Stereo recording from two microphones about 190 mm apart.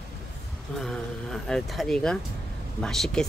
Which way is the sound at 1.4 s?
Centre (ahead or behind).